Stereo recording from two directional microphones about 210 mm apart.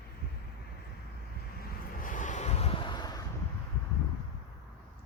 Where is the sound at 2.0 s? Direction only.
40° left (ahead or behind); by 3.3 s 20° left (ahead or behind).